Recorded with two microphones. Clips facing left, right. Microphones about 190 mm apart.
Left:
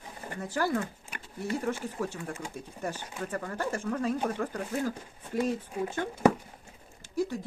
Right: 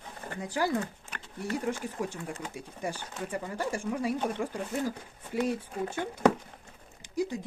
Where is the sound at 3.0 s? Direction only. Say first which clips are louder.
Even; 10° left (ahead or behind).